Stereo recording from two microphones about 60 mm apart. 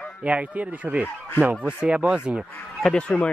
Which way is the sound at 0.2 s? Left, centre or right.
Right.